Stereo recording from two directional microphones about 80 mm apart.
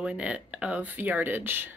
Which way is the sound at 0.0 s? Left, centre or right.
Centre.